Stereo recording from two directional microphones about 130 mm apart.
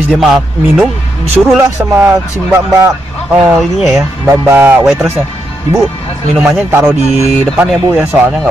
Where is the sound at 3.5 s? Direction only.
Centre (ahead or behind).